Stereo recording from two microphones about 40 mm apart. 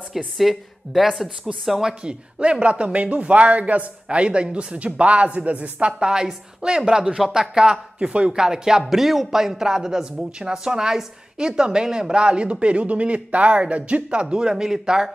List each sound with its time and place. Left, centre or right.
0.4 s speech: centre
1.9 s speech: right
8.1 s speech: right
8.4 s a man's voice: centre; by 14.2 s right
14.3 s a man's voice: centre